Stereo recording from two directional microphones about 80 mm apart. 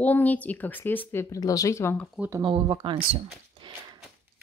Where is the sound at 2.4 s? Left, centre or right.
Right.